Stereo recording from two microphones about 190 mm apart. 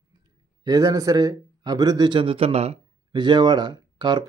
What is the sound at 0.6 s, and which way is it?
Speech, 20° right (ahead or behind).